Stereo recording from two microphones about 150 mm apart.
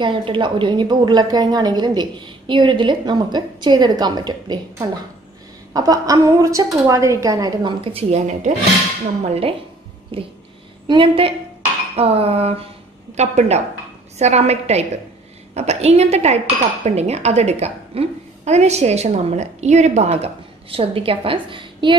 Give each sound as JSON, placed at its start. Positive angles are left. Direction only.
{"t": 0.0, "sound": "a woman's voice", "side_deg": -35}
{"t": 5.7, "sound": "a woman's voice", "side_deg": -25}
{"t": 7.8, "sound": "a woman's voice", "side_deg": -45}